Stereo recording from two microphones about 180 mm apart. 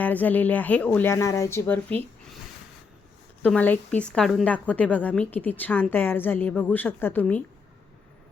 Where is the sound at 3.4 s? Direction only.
10° left (ahead or behind).